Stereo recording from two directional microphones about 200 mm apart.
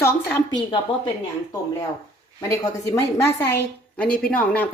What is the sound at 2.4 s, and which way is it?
Speech, 15° left (ahead or behind).